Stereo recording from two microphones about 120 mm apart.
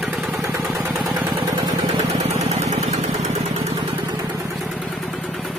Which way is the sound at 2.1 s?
65° right (ahead or behind).